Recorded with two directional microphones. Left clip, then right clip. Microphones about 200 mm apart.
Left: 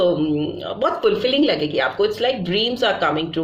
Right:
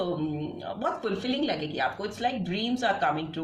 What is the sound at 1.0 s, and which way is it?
A woman's voice, 35° left (ahead or behind).